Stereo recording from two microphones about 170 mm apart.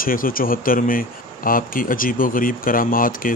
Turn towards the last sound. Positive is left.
turn(degrees=55)  # may be behind; listen again after turning